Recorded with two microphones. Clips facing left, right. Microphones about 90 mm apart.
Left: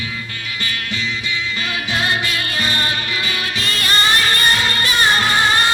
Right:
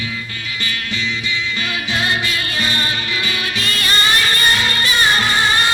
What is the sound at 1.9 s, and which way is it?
Music, 45° left (ahead or behind).